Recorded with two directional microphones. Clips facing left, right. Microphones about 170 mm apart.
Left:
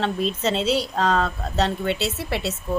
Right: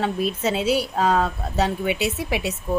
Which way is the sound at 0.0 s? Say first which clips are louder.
Even; 10° right (ahead or behind).